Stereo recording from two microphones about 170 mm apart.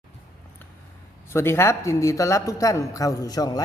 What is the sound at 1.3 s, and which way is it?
A man's voice, 15° left (ahead or behind).